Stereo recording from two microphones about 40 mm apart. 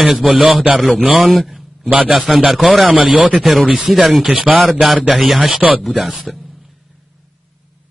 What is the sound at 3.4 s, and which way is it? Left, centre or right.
A man's voice, centre.